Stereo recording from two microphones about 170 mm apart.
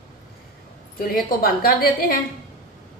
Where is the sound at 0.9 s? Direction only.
60° left (ahead or behind).